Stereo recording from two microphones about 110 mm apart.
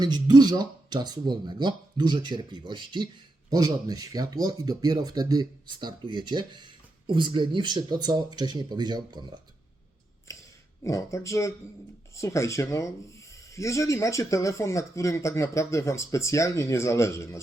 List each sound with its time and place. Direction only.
0.0 s speech: 40° right (ahead or behind)
3.5 s speech: 35° right (ahead or behind)
10.8 s speech: 25° left (ahead or behind)